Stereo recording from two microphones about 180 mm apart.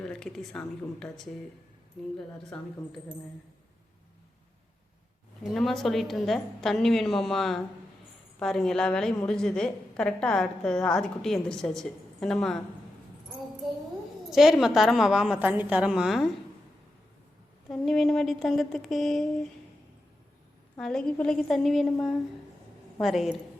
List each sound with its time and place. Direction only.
0.0 s a woman's voice: 5° left (ahead or behind)
2.5 s a woman's voice: 5° left (ahead or behind)
5.4 s a woman's voice: centre (ahead or behind)
14.3 s a woman's voice: centre (ahead or behind)
17.7 s a woman's voice: centre (ahead or behind)
20.7 s a woman's voice: 5° left (ahead or behind)